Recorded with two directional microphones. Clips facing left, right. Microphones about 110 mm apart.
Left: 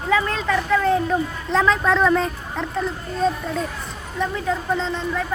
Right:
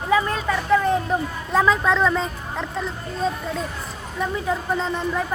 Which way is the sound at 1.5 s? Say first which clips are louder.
Even; 5° right (ahead or behind).